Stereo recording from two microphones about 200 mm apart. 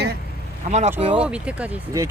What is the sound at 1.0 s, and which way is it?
Speech, 30° right (ahead or behind).